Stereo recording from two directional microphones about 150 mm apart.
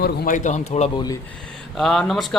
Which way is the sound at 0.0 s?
60° left (ahead or behind).